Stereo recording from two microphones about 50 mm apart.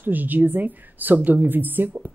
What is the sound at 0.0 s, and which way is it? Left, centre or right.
Speech, right.